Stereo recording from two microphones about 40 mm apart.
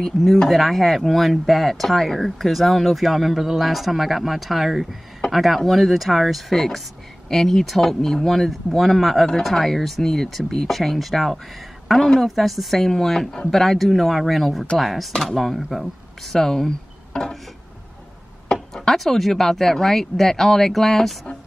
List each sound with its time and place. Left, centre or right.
0.4 s speech: centre
8.5 s speech: centre
13.3 s speech: centre
13.6 s speech: centre
16.3 s speech: centre
18.7 s speech: centre